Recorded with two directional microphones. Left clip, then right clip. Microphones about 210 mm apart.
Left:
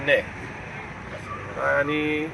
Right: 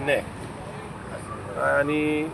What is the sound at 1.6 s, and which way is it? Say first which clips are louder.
Speech: even; centre (ahead or behind).